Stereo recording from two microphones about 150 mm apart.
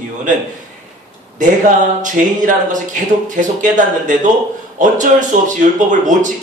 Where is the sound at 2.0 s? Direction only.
60° right (ahead or behind).